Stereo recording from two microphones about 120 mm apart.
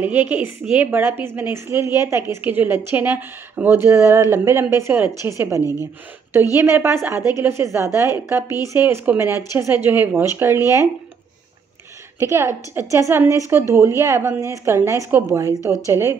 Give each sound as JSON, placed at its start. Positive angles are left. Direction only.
{"t": 0.0, "sound": "a woman's voice", "side_deg": -15}
{"t": 5.6, "sound": "a woman's voice", "side_deg": 25}
{"t": 6.5, "sound": "a woman's voice", "side_deg": -20}
{"t": 12.2, "sound": "a woman's voice", "side_deg": -25}